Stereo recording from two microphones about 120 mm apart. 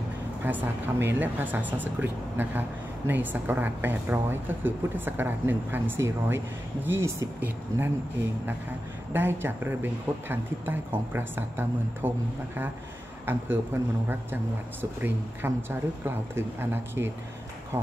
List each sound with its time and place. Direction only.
0.4 s a woman's voice: 15° right (ahead or behind)
9.1 s a woman's voice: 15° right (ahead or behind)
13.2 s a man's voice: 20° right (ahead or behind)